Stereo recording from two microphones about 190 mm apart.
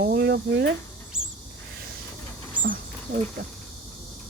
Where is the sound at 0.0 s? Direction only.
60° right (ahead or behind).